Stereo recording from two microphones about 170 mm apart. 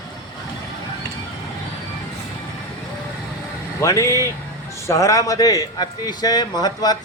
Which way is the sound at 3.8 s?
20° left (ahead or behind).